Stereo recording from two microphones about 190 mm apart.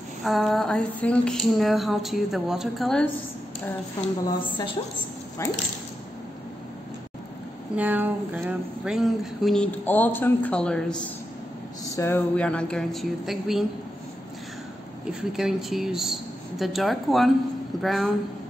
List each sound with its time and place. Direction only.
0.2 s speech: centre (ahead or behind)
5.4 s speech: 15° left (ahead or behind)
7.7 s speech: 10° right (ahead or behind)
15.0 s speech: 5° right (ahead or behind)